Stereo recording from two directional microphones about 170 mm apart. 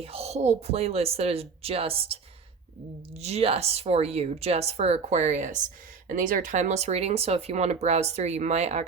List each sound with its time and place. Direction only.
0.0 s a woman's voice: 35° right (ahead or behind)
3.2 s a woman's voice: 40° right (ahead or behind)